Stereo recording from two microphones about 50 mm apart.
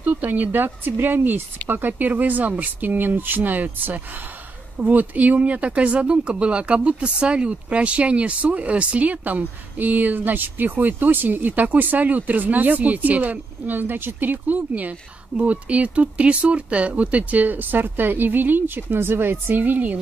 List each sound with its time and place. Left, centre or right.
0.0 s speech: right